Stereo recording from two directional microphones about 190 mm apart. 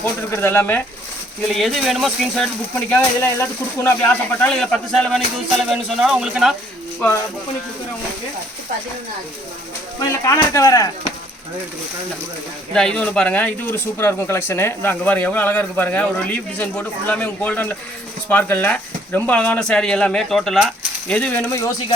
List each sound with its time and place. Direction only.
0.0 s speech: 10° left (ahead or behind)
1.5 s speech: centre (ahead or behind)
2.9 s speech: 15° left (ahead or behind); by 6.5 s 5° right (ahead or behind)
10.2 s speech: 15° left (ahead or behind)
12.7 s speech: 5° left (ahead or behind)